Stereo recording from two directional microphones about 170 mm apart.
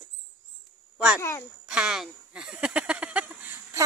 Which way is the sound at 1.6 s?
5° right (ahead or behind).